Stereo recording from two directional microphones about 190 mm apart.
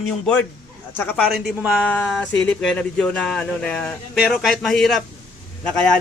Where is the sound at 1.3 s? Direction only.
Centre (ahead or behind).